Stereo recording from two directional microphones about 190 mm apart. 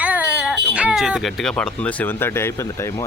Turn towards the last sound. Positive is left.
turn(degrees=15)  # may be behind; listen again after turning